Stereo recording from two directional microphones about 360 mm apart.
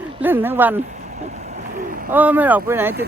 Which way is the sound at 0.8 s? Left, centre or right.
Centre.